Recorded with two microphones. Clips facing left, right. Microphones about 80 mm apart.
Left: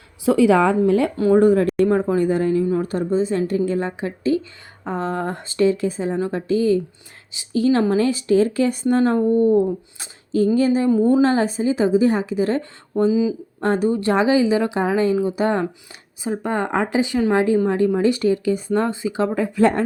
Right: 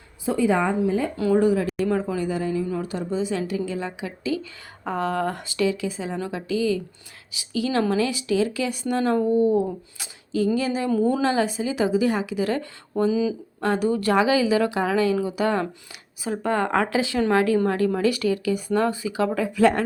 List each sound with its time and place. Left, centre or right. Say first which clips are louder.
0.3 s speech: left 6 dB; left
0.8 s speech: left 6 dB; left
1.1 s speech: left 4 dB; left
10.0 s a sound: left 4 dB; left
11.3 s speech: left 4 dB; left